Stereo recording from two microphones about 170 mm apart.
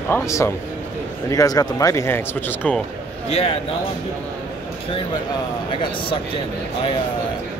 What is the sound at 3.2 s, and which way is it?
Speech, 35° left (ahead or behind).